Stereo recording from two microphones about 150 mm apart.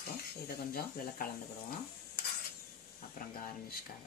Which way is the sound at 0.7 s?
70° left (ahead or behind).